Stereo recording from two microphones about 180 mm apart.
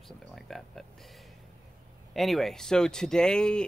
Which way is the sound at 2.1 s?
Centre (ahead or behind).